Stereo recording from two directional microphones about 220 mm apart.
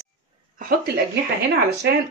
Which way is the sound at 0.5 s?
40° right (ahead or behind).